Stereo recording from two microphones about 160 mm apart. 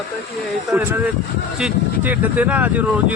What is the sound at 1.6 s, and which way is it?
A man's voice, 5° right (ahead or behind).